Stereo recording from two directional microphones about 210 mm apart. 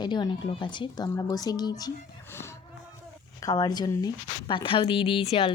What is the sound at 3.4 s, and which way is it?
Speech, 20° left (ahead or behind).